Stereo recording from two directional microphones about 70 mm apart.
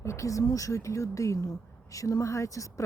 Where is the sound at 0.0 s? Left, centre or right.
Left.